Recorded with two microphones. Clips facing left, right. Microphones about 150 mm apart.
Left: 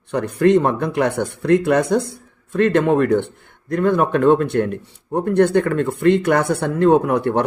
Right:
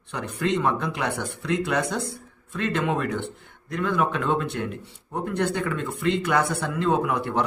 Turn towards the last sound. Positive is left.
turn(degrees=55)  # may be behind; listen again after turning